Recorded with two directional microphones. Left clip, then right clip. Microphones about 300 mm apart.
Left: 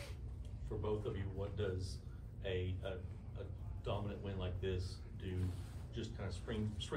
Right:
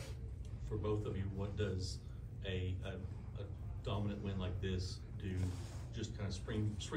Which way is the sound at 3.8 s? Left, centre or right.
Left.